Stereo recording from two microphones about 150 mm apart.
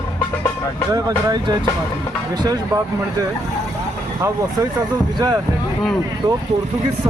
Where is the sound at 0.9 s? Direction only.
25° right (ahead or behind).